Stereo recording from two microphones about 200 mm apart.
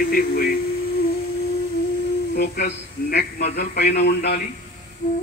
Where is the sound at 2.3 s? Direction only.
50° left (ahead or behind).